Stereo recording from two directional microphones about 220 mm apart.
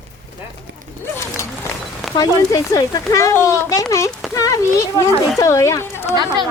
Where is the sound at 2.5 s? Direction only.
15° left (ahead or behind).